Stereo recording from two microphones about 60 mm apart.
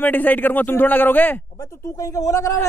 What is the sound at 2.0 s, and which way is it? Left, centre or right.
Speech, left.